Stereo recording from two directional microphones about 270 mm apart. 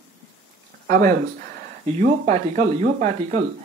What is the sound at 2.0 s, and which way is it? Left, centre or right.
Speech, right.